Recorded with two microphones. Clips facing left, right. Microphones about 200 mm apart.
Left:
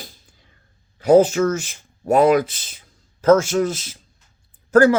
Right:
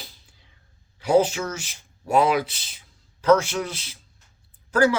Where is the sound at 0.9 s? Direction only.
50° left (ahead or behind).